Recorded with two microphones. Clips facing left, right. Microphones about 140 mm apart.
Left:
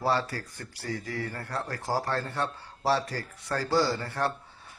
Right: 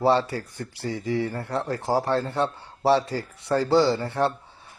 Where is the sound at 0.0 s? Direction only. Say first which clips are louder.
Right 7 dB; 20° right (ahead or behind).